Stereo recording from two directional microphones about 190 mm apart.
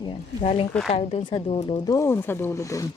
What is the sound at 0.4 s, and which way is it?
Speech, 30° left (ahead or behind).